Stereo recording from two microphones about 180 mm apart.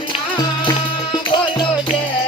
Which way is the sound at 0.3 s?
25° left (ahead or behind).